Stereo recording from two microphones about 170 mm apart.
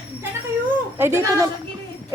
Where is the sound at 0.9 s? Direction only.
15° right (ahead or behind).